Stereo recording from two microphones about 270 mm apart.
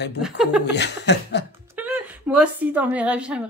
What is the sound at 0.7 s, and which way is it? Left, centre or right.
Speech, left.